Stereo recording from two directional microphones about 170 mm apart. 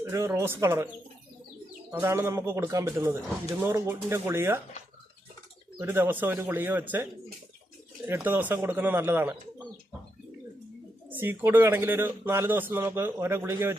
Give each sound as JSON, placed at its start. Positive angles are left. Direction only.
{"t": 0.0, "sound": "a man's voice", "side_deg": -15}
{"t": 1.9, "sound": "a man's voice", "side_deg": -15}
{"t": 5.8, "sound": "a man's voice", "side_deg": -15}
{"t": 11.1, "sound": "a man's voice", "side_deg": -10}